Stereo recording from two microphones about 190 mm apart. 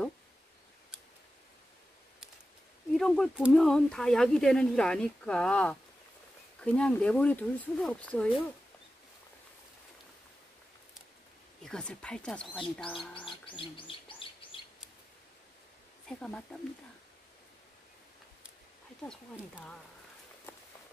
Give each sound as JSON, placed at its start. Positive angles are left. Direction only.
{"t": 2.9, "sound": "speech", "side_deg": 0}
{"t": 11.6, "sound": "speech", "side_deg": 5}
{"t": 13.6, "sound": "bird", "side_deg": 25}
{"t": 16.1, "sound": "speech", "side_deg": 5}